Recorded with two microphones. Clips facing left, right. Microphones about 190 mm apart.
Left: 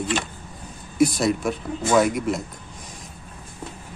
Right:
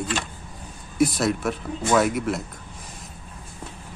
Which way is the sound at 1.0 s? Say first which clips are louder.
Left 2 dB; centre (ahead or behind).